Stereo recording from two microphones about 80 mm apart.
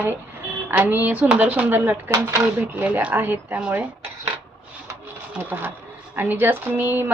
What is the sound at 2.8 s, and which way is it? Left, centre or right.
Speech, centre.